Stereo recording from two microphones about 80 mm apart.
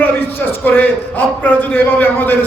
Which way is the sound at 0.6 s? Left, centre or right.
Left.